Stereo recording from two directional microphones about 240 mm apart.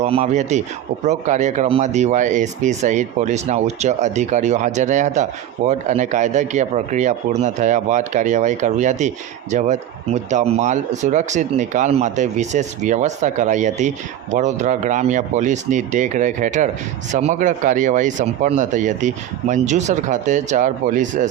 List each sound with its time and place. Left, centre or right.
0.0 s speech: right